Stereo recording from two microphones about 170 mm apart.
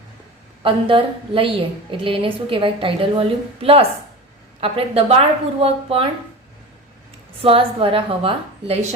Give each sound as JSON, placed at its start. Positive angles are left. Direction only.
{"t": 0.6, "sound": "a woman's voice", "side_deg": -30}
{"t": 7.4, "sound": "a woman's voice", "side_deg": -30}